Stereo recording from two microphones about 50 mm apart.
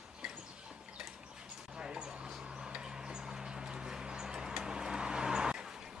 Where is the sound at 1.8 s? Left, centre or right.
Centre.